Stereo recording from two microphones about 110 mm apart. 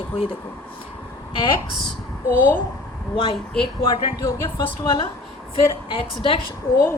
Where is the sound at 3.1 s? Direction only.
50° left (ahead or behind).